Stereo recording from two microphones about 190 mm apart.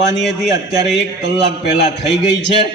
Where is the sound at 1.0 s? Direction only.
65° left (ahead or behind).